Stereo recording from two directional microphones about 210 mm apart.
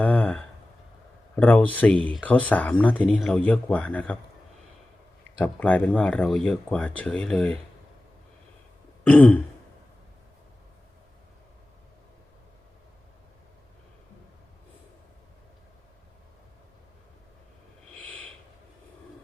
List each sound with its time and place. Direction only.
0.0 s a sound: 5° left (ahead or behind)
1.4 s speech: 5° left (ahead or behind)
5.4 s speech: 5° left (ahead or behind)
9.0 s speech: 5° left (ahead or behind)
17.9 s owl: 5° left (ahead or behind)